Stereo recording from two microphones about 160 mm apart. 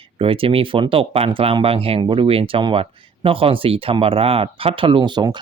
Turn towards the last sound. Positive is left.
turn(degrees=-30)  # may be behind; listen again after turning